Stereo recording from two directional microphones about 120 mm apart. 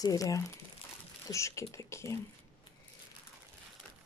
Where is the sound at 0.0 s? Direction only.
30° left (ahead or behind).